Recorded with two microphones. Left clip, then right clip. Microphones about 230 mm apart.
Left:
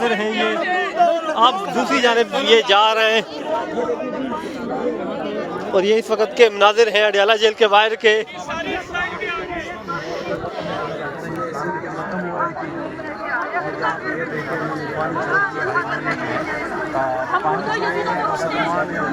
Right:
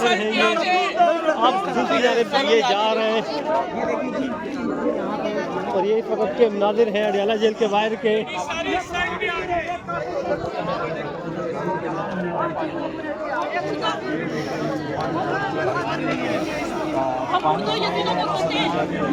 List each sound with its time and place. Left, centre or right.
0.0 s speech: left
5.7 s a man's voice: left